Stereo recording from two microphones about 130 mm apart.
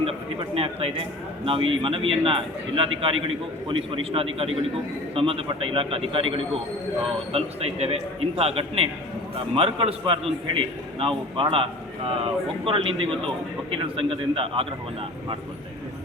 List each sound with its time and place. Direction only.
0.0 s a man's voice: 45° right (ahead or behind)